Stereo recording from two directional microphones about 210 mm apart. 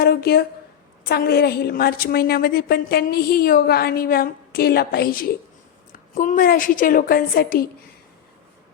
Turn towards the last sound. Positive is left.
turn(degrees=45)  # may be behind; listen again after turning